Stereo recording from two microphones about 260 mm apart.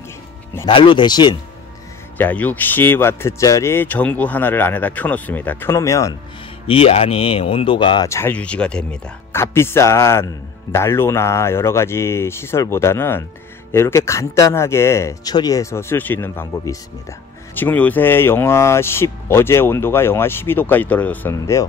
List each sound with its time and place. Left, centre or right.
0.6 s speech: centre
6.7 s speech: left